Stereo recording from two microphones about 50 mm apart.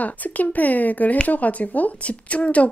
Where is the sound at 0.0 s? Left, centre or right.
Left.